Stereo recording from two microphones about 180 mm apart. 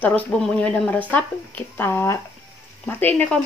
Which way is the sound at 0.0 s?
10° left (ahead or behind).